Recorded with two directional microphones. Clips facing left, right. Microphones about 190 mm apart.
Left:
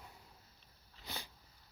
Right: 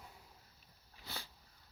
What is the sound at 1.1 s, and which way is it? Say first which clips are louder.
Dog: left 2 dB; 20° left (ahead or behind).